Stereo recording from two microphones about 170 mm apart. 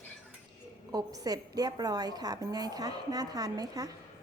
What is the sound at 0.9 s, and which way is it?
A woman's voice, 20° right (ahead or behind).